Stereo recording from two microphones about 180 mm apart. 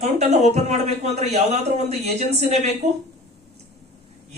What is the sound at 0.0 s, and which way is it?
A man's voice, 40° right (ahead or behind).